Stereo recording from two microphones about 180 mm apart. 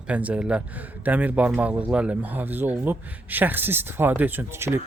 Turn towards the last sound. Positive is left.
turn(degrees=-15)  # may be behind; listen again after turning